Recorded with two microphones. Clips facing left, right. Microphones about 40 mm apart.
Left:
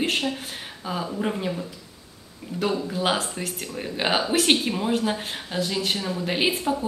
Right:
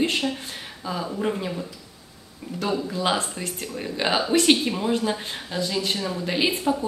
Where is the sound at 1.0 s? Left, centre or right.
Centre.